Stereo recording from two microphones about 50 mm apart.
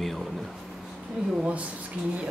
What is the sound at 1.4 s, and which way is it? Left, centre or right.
Speech, right.